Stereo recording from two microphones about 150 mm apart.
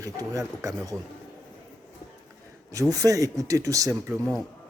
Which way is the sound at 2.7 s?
25° right (ahead or behind).